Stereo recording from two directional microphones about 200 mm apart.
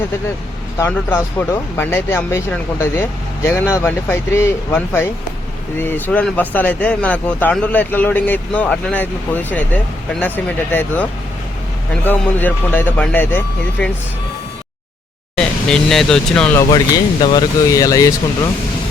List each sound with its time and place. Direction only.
0.8 s speech: 10° left (ahead or behind)
12.0 s speech: 10° left (ahead or behind)
15.4 s speech: 5° left (ahead or behind)